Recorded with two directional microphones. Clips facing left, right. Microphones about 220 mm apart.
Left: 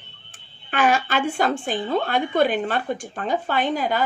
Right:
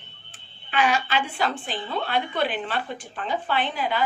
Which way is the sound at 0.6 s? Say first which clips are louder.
Left 3 dB; 50° left (ahead or behind).